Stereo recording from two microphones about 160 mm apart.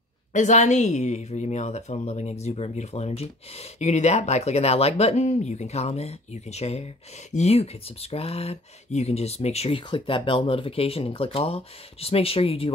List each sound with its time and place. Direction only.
0.3 s speech: 50° left (ahead or behind)